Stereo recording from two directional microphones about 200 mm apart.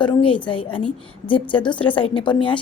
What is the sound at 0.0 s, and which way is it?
A woman's voice, 25° left (ahead or behind).